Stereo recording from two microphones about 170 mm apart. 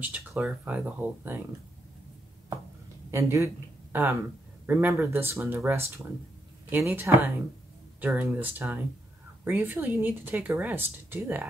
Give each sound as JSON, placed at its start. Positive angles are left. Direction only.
{"t": 0.0, "sound": "speech", "side_deg": -10}
{"t": 3.1, "sound": "speech", "side_deg": -15}